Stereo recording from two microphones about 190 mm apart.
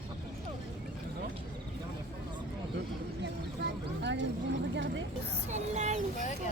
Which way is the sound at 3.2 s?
65° right (ahead or behind).